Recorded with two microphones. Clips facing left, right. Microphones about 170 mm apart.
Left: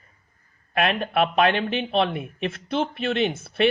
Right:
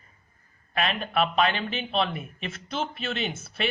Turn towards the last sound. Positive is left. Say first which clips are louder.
# left 8 dB
turn(degrees=60)  # may be behind; listen again after turning